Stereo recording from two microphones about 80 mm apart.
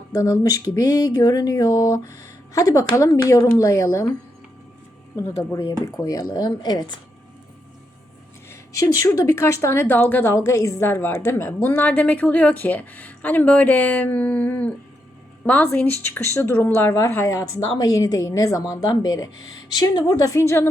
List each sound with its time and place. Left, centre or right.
0.1 s speech: left
5.1 s speech: left
6.1 s speech: left
8.8 s speech: left
10.3 s a woman's voice: left
17.3 s speech: left